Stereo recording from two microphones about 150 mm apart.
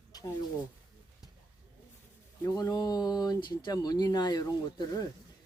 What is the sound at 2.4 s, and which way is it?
Speech, 25° left (ahead or behind).